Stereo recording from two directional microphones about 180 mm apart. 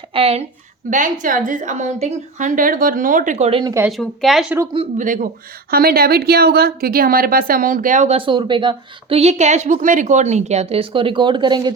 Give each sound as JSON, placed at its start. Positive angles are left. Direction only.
{"t": 0.1, "sound": "speech", "side_deg": -30}
{"t": 0.9, "sound": "a woman's voice", "side_deg": -45}
{"t": 3.6, "sound": "speech", "side_deg": -20}
{"t": 3.8, "sound": "speech", "side_deg": 0}
{"t": 4.9, "sound": "a woman's voice", "side_deg": -45}
{"t": 5.7, "sound": "a woman's voice", "side_deg": -55}